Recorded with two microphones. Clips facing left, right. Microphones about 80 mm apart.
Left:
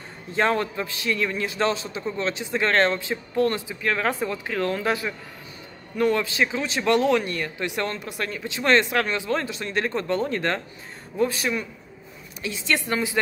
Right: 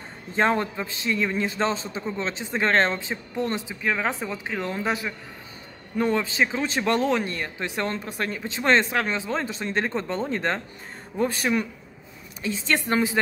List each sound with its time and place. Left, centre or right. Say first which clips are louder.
0.3 s speech: even; right
11.1 s a woman's voice: even; right